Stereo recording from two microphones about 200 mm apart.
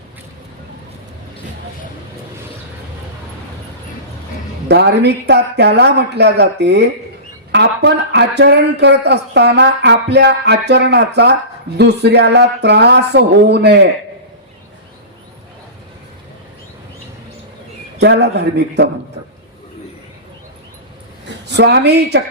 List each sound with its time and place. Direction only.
4.7 s a man's voice: 55° right (ahead or behind)
18.0 s a man's voice: 55° right (ahead or behind)
21.2 s a woman's voice: 55° right (ahead or behind)